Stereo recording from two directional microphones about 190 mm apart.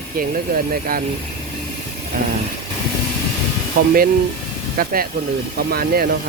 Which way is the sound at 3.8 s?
50° right (ahead or behind).